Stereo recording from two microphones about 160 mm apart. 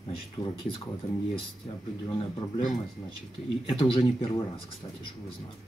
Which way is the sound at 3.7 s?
35° left (ahead or behind).